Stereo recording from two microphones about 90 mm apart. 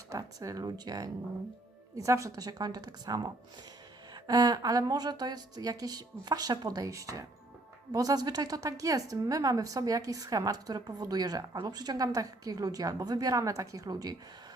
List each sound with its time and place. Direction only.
0.1 s a woman's voice: 40° right (ahead or behind)